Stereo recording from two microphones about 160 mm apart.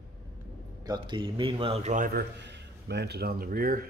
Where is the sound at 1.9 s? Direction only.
70° right (ahead or behind).